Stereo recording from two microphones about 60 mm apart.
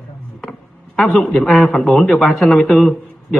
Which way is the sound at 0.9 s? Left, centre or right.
Centre.